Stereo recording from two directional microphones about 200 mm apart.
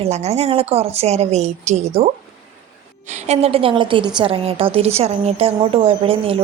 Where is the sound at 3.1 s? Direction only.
35° right (ahead or behind).